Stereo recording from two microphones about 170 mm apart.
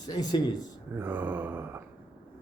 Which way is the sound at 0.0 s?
25° left (ahead or behind).